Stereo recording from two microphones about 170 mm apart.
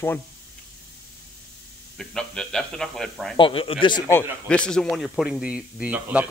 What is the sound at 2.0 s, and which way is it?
Speech, 5° left (ahead or behind).